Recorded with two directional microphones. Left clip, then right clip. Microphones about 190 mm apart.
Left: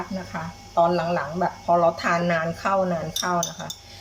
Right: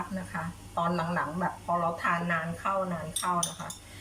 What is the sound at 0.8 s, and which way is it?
Speech, 15° left (ahead or behind).